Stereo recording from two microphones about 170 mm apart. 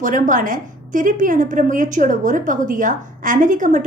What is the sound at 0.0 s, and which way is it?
A woman's voice, 50° right (ahead or behind).